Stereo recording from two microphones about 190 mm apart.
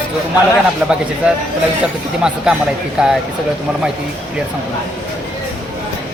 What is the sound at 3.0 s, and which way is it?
Speech, 5° right (ahead or behind).